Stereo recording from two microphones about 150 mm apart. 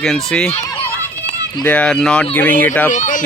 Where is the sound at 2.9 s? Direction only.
55° left (ahead or behind).